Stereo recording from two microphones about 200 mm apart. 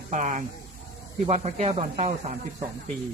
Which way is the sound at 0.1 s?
40° right (ahead or behind).